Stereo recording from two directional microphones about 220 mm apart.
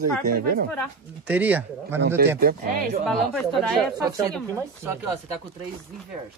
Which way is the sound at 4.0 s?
15° right (ahead or behind).